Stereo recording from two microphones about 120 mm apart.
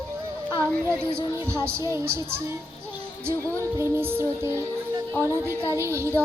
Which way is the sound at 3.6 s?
20° right (ahead or behind).